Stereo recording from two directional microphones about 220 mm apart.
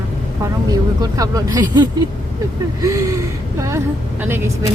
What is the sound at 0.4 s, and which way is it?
Speech, 15° right (ahead or behind).